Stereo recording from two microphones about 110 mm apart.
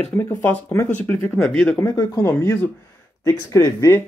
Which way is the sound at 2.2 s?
20° left (ahead or behind).